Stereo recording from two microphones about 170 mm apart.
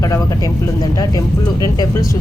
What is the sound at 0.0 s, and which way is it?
Speech, 20° left (ahead or behind).